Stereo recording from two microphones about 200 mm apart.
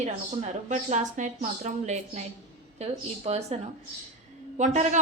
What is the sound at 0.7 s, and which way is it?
Speech, 35° right (ahead or behind).